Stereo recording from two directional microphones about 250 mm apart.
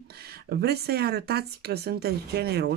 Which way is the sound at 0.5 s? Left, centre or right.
Right.